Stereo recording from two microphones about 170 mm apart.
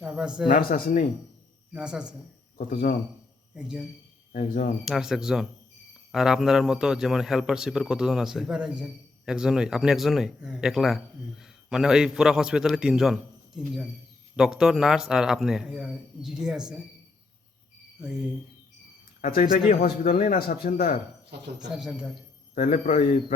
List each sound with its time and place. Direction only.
0.0 s speech: 5° right (ahead or behind)
0.7 s speech: 50° left (ahead or behind)
1.7 s a man's voice: 5° right (ahead or behind)
2.6 s speech: 50° left (ahead or behind)
3.5 s a man's voice: 5° right (ahead or behind)
4.3 s speech: 50° left (ahead or behind)
4.9 s a man's voice: centre (ahead or behind)
14.3 s a man's voice: 5° right (ahead or behind)
19.2 s speech: 50° left (ahead or behind)
21.7 s a man's voice: 5° right (ahead or behind)
22.5 s speech: 50° left (ahead or behind)